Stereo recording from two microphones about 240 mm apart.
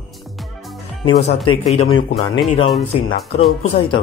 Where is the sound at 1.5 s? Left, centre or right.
Left.